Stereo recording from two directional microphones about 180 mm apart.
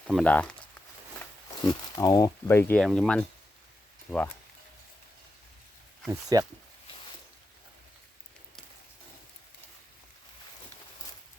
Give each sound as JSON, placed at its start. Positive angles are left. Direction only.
{"t": 0.1, "sound": "speech", "side_deg": 5}
{"t": 1.2, "sound": "speech", "side_deg": 20}
{"t": 6.1, "sound": "speech", "side_deg": -20}